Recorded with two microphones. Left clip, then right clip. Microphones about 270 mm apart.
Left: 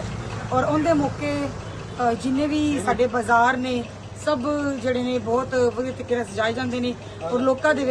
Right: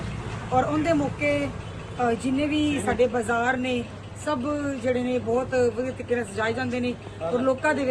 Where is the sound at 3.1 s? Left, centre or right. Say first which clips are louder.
Left 6 dB; centre.